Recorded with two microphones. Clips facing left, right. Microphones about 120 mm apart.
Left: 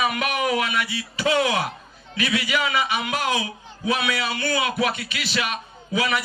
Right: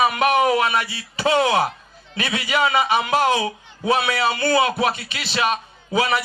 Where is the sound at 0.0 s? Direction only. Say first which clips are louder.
Right 6 dB; 30° right (ahead or behind).